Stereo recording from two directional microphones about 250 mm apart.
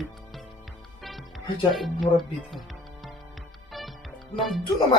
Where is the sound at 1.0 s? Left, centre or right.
Centre.